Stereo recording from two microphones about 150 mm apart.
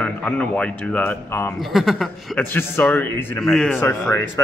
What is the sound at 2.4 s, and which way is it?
Speech, 15° left (ahead or behind).